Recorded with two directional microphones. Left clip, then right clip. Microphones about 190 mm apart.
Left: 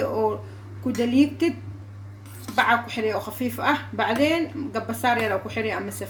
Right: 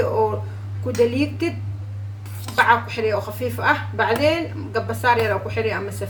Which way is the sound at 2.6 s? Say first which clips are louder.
Right 4 dB; 50° left (ahead or behind).